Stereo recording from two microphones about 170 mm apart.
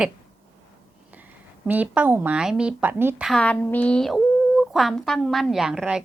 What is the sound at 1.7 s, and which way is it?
A woman's voice, 10° right (ahead or behind).